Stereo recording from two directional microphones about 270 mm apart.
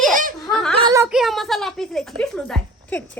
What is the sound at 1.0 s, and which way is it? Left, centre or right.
A woman's voice, centre.